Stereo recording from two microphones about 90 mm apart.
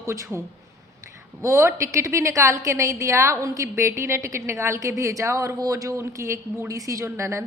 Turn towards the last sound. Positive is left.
turn(degrees=-30)  # may be behind; listen again after turning